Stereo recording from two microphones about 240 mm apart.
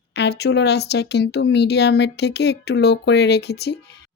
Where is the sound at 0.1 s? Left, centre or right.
Left.